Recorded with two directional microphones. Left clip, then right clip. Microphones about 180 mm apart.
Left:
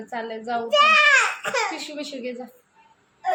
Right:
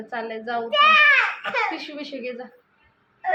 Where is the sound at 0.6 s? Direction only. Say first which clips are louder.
Right 1 dB; 60° left (ahead or behind).